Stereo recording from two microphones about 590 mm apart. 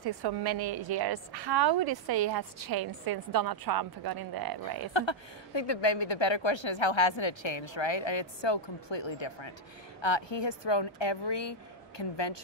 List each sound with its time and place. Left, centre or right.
0.0 s a woman's voice: right
4.9 s a woman's voice: left